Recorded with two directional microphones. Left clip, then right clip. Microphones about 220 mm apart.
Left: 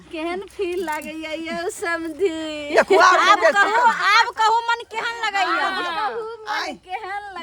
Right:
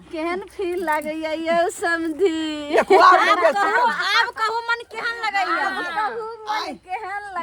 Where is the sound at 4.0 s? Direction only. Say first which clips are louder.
Left 3 dB; 25° left (ahead or behind).